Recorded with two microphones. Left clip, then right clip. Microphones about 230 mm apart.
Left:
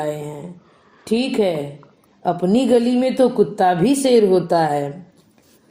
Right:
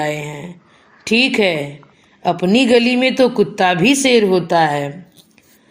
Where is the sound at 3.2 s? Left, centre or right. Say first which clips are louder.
Even; right.